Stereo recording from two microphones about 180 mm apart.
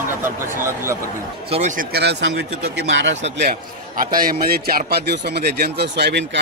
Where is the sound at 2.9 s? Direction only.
90° right.